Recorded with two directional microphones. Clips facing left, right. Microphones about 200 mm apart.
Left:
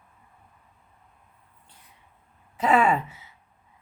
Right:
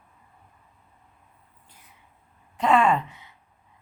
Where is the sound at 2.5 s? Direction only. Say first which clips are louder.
Right 1 dB; 5° left (ahead or behind).